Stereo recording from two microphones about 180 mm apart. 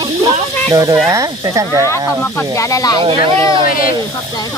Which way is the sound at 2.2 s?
15° left (ahead or behind).